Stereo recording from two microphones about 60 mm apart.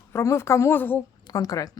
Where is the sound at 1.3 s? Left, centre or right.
Left.